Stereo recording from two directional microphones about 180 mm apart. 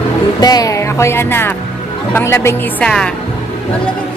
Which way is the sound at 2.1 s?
15° left (ahead or behind).